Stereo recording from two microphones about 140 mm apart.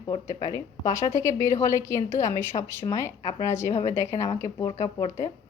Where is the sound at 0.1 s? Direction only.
25° left (ahead or behind).